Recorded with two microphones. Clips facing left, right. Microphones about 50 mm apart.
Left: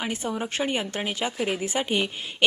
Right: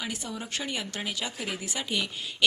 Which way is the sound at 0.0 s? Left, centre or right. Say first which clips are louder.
Left 7 dB; left.